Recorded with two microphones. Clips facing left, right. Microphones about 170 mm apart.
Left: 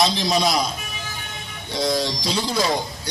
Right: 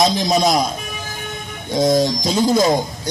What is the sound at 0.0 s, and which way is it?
Speech, 45° right (ahead or behind).